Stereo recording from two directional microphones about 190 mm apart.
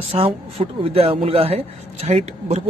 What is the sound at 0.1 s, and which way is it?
Speech, 30° right (ahead or behind).